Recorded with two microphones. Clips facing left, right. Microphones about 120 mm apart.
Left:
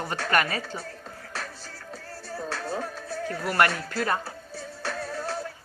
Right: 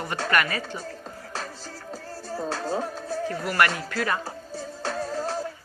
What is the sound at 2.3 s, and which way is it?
Music, 25° right (ahead or behind).